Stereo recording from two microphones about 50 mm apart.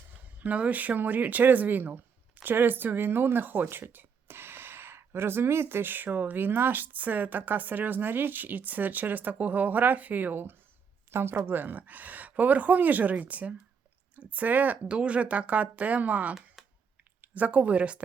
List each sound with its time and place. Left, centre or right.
0.2 s speech: right
16.6 s clicking: centre
17.2 s speech: right